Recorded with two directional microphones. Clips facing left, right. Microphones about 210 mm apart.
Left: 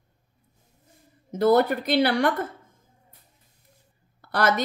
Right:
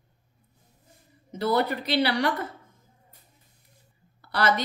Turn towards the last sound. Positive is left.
turn(degrees=50)  # may be behind; listen again after turning